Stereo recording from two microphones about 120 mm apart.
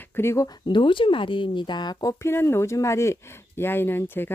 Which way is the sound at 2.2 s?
20° left (ahead or behind).